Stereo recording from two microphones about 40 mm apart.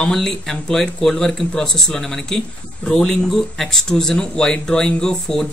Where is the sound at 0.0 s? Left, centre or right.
Centre.